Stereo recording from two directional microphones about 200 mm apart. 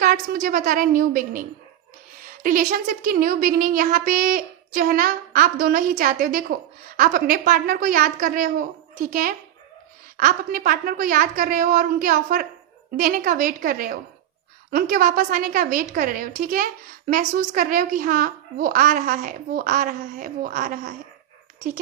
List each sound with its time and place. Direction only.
0.0 s a woman's voice: 45° right (ahead or behind)